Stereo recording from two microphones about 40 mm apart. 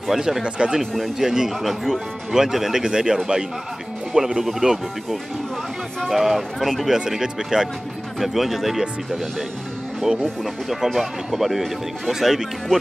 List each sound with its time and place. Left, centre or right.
0.1 s speech: centre
0.4 s speech: right
0.7 s speech: centre
6.1 s speech: centre
10.4 s speech: centre